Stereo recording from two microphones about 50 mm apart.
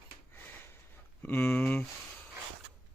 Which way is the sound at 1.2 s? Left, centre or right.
Left.